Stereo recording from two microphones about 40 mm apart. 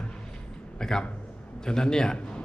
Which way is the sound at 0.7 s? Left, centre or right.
Centre.